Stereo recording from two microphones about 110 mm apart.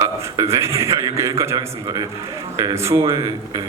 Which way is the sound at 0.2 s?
25° right (ahead or behind).